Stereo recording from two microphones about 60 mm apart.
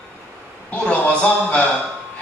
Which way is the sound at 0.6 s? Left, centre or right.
Left.